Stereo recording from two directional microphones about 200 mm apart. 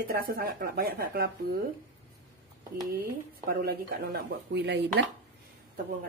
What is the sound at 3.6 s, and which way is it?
Speech, 50° right (ahead or behind).